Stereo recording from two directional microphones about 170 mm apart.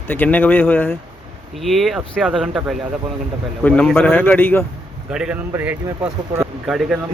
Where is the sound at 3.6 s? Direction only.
10° left (ahead or behind).